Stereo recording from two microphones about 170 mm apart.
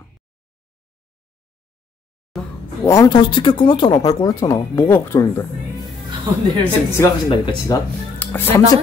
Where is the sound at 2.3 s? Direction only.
Centre (ahead or behind).